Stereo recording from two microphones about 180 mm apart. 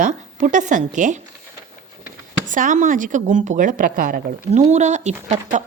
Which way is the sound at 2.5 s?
45° right (ahead or behind).